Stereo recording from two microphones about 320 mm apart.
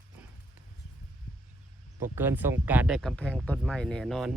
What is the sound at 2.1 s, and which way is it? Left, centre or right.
A man's voice, centre.